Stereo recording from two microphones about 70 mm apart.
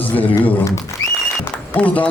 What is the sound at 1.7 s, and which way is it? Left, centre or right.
Speech, left.